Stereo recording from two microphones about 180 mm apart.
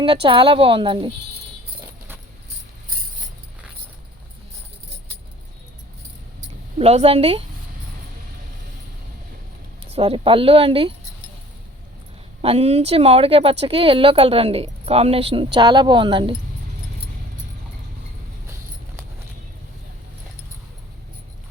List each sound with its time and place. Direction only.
0.0 s a woman's voice: 30° right (ahead or behind)
6.7 s speech: 35° right (ahead or behind)
9.9 s speech: 30° right (ahead or behind)
12.4 s a woman's voice: 35° right (ahead or behind)